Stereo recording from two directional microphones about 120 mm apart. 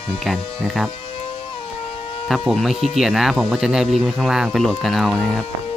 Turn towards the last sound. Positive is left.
turn(degrees=10)  # may be behind; listen again after turning